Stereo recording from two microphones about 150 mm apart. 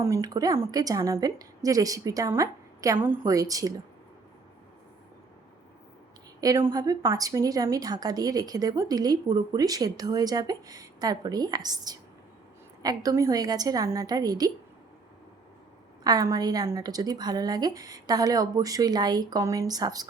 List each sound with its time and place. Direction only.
0.0 s a woman's voice: 20° right (ahead or behind)
6.4 s a woman's voice: 25° right (ahead or behind)
16.0 s a woman's voice: 25° right (ahead or behind)